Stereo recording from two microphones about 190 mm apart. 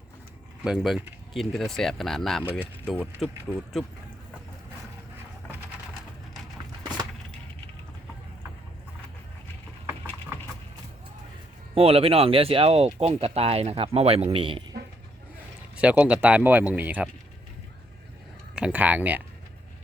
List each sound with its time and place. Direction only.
0.6 s speech: centre (ahead or behind)
2.4 s speech: 10° right (ahead or behind)
2.8 s speech: 5° left (ahead or behind)
11.7 s speech: 30° right (ahead or behind)
15.7 s speech: 5° right (ahead or behind)
18.5 s speech: 5° right (ahead or behind)